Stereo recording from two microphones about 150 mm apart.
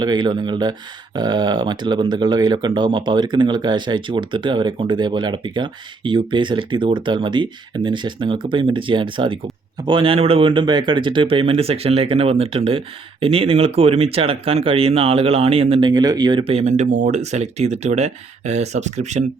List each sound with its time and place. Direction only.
0.0 s speech: 30° right (ahead or behind); by 19.2 s 50° right (ahead or behind)